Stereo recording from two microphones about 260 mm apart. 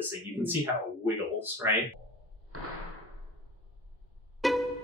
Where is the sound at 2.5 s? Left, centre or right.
Right.